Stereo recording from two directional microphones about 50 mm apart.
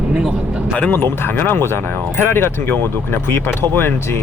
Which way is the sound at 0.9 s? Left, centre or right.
Left.